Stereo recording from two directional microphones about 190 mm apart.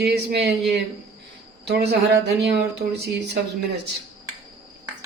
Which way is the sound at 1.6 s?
60° right (ahead or behind).